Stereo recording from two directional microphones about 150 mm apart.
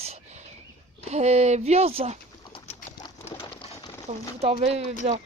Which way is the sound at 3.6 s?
25° left (ahead or behind).